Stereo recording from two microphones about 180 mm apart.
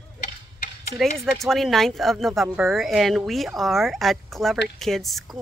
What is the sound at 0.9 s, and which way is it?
Speech, centre (ahead or behind).